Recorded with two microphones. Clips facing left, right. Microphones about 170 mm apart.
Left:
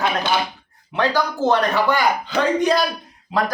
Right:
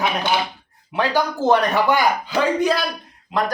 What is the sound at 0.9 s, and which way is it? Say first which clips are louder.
Speech: even; 15° right (ahead or behind).